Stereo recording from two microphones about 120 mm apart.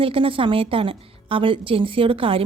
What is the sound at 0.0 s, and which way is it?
A woman's voice, 50° right (ahead or behind).